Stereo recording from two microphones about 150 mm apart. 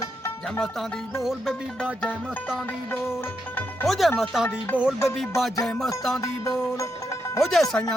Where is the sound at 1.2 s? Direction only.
5° left (ahead or behind).